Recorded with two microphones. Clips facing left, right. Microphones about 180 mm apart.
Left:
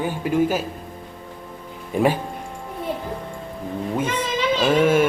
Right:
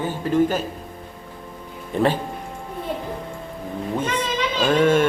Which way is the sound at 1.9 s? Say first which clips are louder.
Left 1 dB; 10° left (ahead or behind).